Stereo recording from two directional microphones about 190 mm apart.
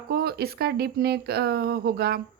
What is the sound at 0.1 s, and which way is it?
A woman's voice, 55° right (ahead or behind).